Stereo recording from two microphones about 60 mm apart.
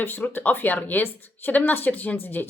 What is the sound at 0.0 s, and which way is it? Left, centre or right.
Speech, left.